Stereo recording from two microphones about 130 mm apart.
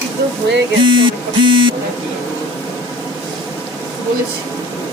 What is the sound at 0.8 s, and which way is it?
Speech, 40° right (ahead or behind).